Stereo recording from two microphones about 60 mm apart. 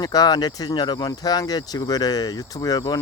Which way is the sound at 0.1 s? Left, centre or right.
Left.